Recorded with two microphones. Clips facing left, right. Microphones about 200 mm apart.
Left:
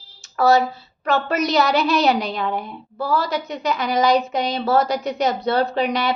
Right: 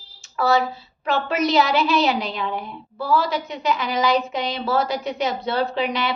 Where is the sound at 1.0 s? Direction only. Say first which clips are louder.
Left 1 dB; 40° left (ahead or behind).